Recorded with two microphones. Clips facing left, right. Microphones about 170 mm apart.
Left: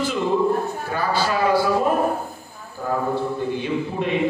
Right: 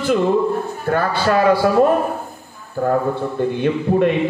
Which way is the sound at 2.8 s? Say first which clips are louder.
Right 5 dB; 60° right (ahead or behind).